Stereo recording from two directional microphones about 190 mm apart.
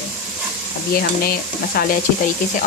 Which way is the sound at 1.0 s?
50° left (ahead or behind).